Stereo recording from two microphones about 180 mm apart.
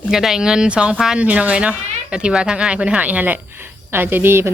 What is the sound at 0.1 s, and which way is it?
A woman's voice, centre (ahead or behind).